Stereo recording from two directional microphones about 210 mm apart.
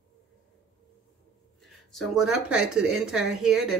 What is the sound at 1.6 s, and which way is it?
Speech, centre (ahead or behind).